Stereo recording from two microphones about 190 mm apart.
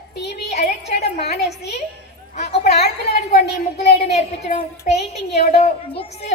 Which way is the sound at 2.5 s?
60° left (ahead or behind).